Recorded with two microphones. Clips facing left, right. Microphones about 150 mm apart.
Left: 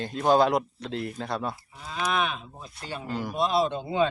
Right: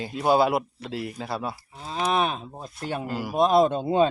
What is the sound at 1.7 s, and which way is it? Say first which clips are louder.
Cattle: right 4 dB; 30° right (ahead or behind).